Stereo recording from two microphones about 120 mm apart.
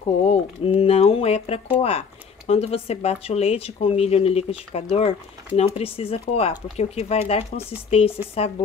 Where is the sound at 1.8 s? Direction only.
60° left (ahead or behind).